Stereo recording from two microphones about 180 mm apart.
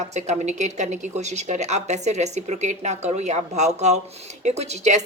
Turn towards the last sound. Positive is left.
turn(degrees=-40)  # may be behind; listen again after turning